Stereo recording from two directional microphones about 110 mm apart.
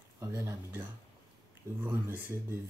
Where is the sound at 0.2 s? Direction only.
20° right (ahead or behind).